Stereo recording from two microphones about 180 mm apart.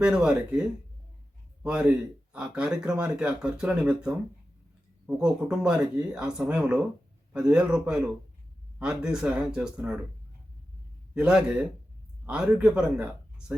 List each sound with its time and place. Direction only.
0.0 s speech: 5° right (ahead or behind)
11.1 s speech: 5° right (ahead or behind)